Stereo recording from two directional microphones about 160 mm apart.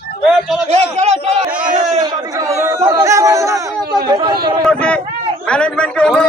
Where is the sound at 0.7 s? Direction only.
40° right (ahead or behind).